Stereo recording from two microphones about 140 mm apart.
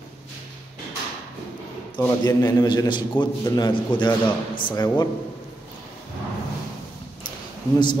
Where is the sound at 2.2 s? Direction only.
30° left (ahead or behind).